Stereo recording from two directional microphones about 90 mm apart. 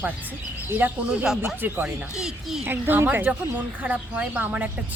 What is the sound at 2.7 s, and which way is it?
Speech, 20° right (ahead or behind).